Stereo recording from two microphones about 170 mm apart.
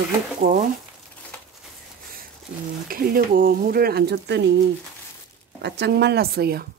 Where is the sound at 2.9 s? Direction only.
60° right (ahead or behind); by 4.5 s 80° right.